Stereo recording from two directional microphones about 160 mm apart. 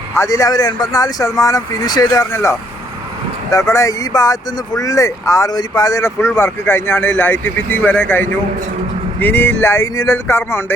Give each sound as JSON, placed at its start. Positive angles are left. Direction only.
{"t": 0.1, "sound": "speech", "side_deg": 20}